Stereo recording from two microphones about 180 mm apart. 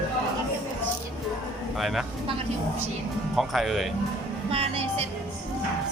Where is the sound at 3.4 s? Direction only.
Centre (ahead or behind).